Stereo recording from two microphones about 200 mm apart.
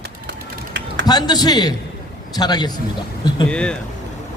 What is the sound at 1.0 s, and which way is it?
A man's voice, 20° left (ahead or behind).